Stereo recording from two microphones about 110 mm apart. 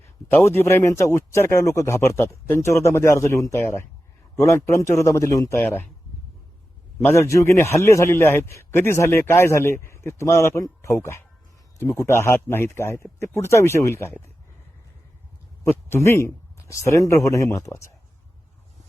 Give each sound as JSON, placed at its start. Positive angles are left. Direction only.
{"t": 0.3, "sound": "a man's voice", "side_deg": 20}
{"t": 7.0, "sound": "a man's voice", "side_deg": 25}
{"t": 15.6, "sound": "a man's voice", "side_deg": 25}